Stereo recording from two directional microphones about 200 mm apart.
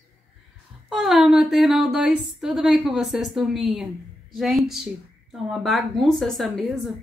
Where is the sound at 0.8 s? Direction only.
Centre (ahead or behind).